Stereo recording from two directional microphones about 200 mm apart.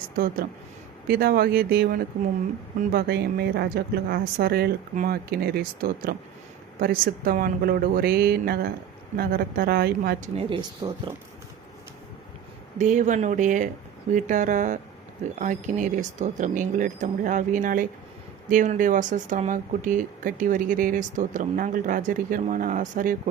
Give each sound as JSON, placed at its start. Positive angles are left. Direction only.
{"t": 1.0, "sound": "speech", "side_deg": -50}
{"t": 10.3, "sound": "speech", "side_deg": -25}
{"t": 12.8, "sound": "speech", "side_deg": -40}